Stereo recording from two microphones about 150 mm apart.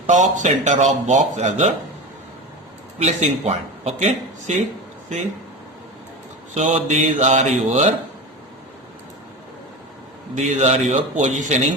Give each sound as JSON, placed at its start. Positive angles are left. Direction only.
{"t": 0.1, "sound": "speech", "side_deg": -55}
{"t": 3.0, "sound": "speech", "side_deg": -50}
{"t": 6.5, "sound": "speech", "side_deg": -50}
{"t": 10.3, "sound": "speech", "side_deg": -50}